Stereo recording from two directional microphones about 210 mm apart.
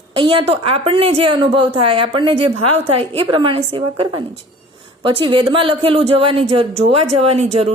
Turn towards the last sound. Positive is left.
turn(degrees=-30)  # may be behind; listen again after turning